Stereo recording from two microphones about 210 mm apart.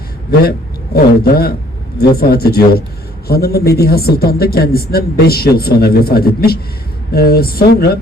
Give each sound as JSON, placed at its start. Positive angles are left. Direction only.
{"t": 0.9, "sound": "a woman's voice", "side_deg": 45}